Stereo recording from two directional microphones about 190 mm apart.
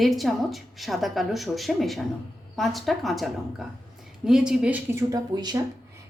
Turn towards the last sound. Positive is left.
turn(degrees=-20)  # may be behind; listen again after turning